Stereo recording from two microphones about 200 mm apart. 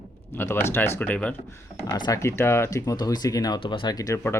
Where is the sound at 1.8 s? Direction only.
20° left (ahead or behind).